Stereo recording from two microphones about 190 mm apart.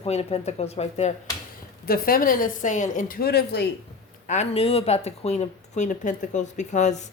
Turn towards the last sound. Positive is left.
turn(degrees=40)  # may be behind; listen again after turning